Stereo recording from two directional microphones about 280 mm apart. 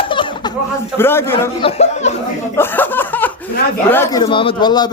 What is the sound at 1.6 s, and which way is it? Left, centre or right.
Speech, left.